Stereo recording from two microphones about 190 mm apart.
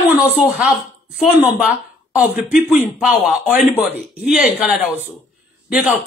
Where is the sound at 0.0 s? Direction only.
5° right (ahead or behind).